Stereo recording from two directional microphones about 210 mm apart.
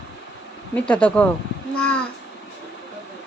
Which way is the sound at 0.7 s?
5° left (ahead or behind).